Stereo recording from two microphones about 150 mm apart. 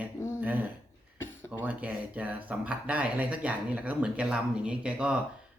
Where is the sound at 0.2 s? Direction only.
15° left (ahead or behind).